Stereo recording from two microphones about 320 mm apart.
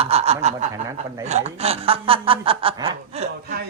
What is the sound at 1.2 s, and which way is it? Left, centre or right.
Speech, right.